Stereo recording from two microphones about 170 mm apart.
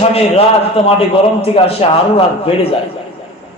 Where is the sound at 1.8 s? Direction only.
35° left (ahead or behind).